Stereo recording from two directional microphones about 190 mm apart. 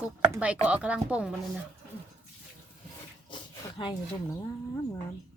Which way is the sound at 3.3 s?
25° left (ahead or behind).